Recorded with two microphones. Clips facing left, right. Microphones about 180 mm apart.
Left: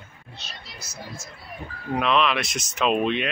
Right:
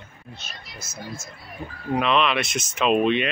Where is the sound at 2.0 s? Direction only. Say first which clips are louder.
Even; centre (ahead or behind).